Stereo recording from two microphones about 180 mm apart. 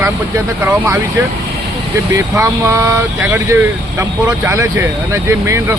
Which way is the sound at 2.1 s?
15° right (ahead or behind).